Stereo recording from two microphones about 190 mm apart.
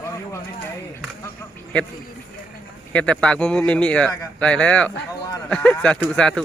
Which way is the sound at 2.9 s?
5° left (ahead or behind).